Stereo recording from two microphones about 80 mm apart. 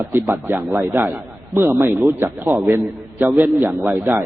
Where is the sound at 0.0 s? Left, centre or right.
Right.